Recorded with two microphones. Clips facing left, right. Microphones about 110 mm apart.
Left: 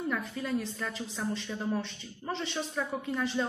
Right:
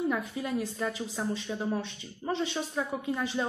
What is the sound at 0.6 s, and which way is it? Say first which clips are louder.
A woman's voice: right 3 dB; 10° right (ahead or behind).